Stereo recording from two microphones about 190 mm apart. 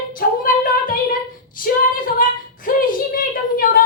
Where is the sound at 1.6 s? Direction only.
45° left (ahead or behind).